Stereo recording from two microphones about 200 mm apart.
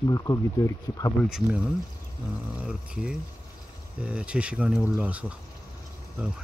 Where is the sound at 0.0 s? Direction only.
20° left (ahead or behind).